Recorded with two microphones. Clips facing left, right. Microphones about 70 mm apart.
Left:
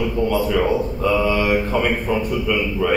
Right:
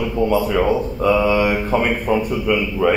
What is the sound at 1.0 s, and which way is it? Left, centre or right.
A man's voice, centre.